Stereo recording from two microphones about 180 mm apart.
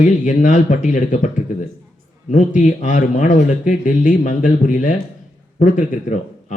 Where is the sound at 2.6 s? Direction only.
45° left (ahead or behind).